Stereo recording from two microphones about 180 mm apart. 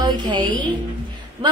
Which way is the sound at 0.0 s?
25° right (ahead or behind).